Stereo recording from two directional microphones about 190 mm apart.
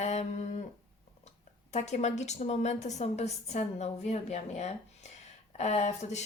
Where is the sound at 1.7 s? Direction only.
35° left (ahead or behind).